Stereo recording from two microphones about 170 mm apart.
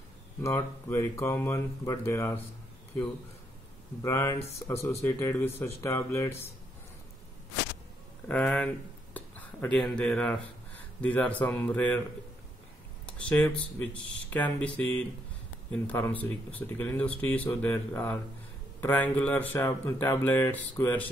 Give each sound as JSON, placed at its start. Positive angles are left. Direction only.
{"t": 0.4, "sound": "speech", "side_deg": 15}
{"t": 4.0, "sound": "speech", "side_deg": 15}
{"t": 8.3, "sound": "speech", "side_deg": 10}
{"t": 13.0, "sound": "speech", "side_deg": 10}